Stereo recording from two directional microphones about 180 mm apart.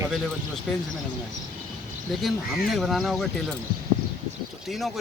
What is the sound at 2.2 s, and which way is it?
Speech, centre (ahead or behind).